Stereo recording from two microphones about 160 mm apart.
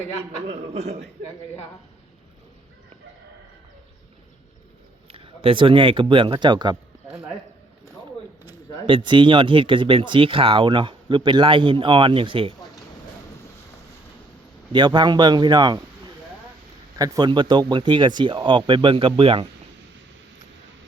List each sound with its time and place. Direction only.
0.4 s speech: 40° right (ahead or behind)
5.1 s speech: 35° right (ahead or behind)
8.9 s speech: 30° right (ahead or behind)
14.7 s a man's voice: 30° right (ahead or behind)
17.0 s speech: 25° right (ahead or behind)